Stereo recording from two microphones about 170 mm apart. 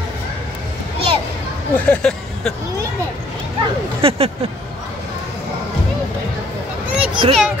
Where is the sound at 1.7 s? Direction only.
5° left (ahead or behind).